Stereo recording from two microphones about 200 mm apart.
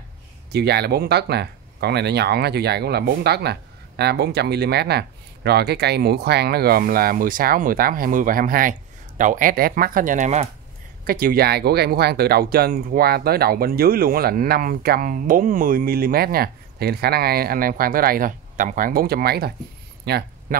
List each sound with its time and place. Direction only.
0.5 s speech: 55° right (ahead or behind); by 10.5 s 35° right (ahead or behind)
11.1 s speech: 45° right (ahead or behind)
20.1 s a sound: 50° right (ahead or behind)